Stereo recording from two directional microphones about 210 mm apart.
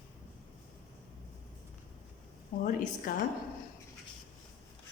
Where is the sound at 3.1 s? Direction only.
40° left (ahead or behind).